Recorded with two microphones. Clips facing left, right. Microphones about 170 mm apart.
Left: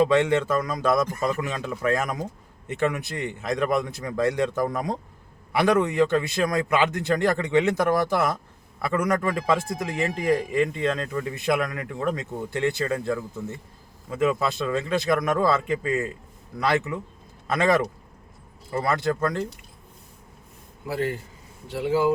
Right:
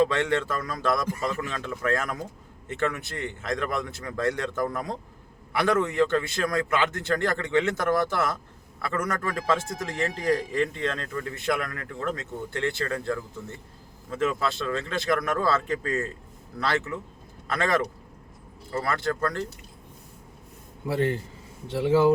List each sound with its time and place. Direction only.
0.0 s a man's voice: 20° left (ahead or behind)
20.8 s speech: 25° right (ahead or behind)